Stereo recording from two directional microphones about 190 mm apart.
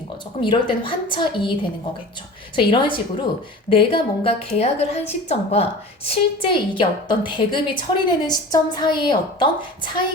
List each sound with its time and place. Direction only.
0.3 s a woman's voice: 25° left (ahead or behind)
2.6 s a woman's voice: 25° left (ahead or behind)